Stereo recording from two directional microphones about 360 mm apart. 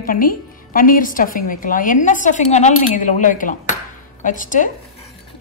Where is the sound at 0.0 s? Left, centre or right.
Left.